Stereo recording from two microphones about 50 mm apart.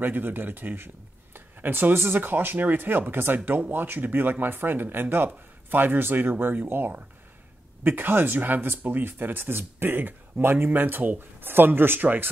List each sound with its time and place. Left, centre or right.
0.0 s speech: right